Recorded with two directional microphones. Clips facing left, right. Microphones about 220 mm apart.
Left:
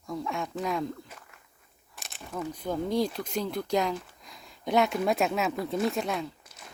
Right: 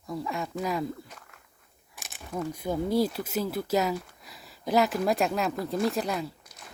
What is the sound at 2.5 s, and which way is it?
Speech, 10° right (ahead or behind).